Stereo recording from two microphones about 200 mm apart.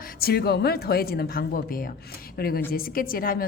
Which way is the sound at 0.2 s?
50° left (ahead or behind).